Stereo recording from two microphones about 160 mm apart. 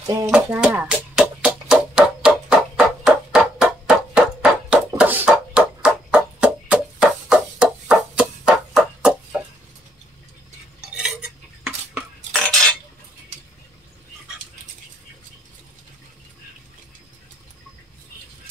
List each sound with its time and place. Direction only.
0.0 s a sound: 20° right (ahead or behind)
0.3 s music: 5° right (ahead or behind)
11.0 s cutlery: 5° right (ahead or behind)